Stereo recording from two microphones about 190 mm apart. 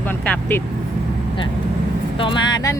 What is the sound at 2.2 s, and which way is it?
Speech, 25° left (ahead or behind).